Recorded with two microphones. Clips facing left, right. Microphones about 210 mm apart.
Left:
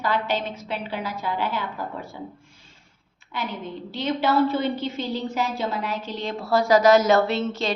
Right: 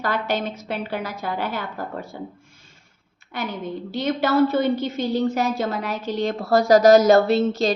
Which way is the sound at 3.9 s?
45° right (ahead or behind).